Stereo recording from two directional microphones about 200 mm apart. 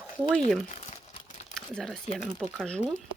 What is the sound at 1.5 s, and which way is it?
Speech, 5° left (ahead or behind).